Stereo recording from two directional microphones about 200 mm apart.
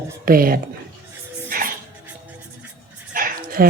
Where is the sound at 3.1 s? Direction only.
45° right (ahead or behind).